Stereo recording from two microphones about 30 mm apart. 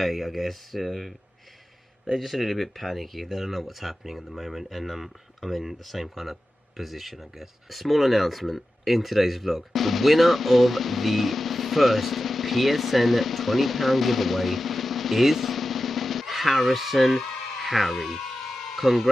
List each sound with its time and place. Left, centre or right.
0.0 s speech: centre
2.1 s speech: centre
18.6 s a sound: centre